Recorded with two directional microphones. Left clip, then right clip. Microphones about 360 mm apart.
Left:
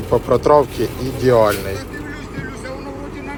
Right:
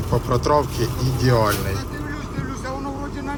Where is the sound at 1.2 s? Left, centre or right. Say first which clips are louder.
Left 6 dB; centre.